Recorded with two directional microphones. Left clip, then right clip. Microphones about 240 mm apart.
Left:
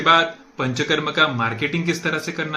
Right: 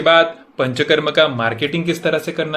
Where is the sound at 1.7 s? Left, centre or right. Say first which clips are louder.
Right 3 dB; left.